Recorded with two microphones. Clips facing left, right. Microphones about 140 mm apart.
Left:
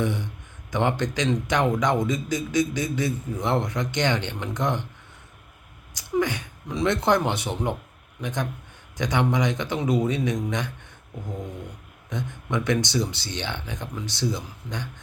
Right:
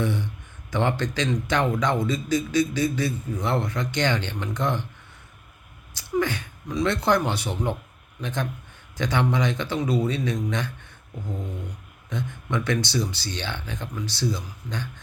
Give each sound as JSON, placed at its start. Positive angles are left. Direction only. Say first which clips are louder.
{"t": 0.0, "sound": "speech", "louder": "even", "side_deg": 15}
{"t": 5.9, "sound": "speech", "louder": "even", "side_deg": 15}
{"t": 12.0, "sound": "speech", "louder": "right 1 dB", "side_deg": 15}